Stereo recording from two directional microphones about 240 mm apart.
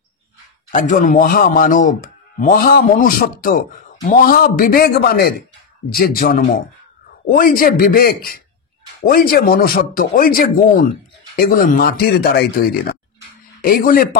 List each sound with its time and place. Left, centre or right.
0.7 s a man's voice: left